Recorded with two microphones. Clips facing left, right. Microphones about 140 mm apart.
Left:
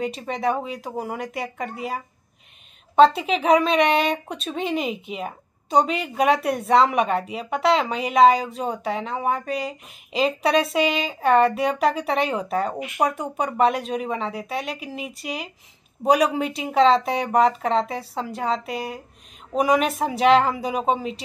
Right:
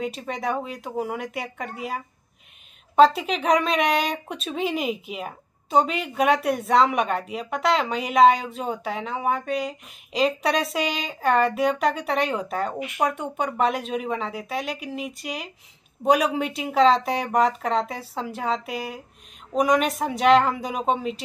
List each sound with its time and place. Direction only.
0.0 s speech: centre (ahead or behind)